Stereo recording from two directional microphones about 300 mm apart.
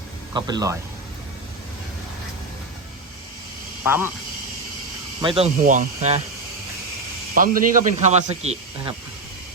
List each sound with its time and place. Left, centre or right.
0.3 s speech: centre
3.8 s speech: centre
5.2 s speech: centre
7.3 s speech: right